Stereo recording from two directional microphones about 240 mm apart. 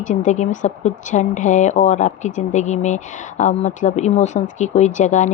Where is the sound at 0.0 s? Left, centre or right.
Left.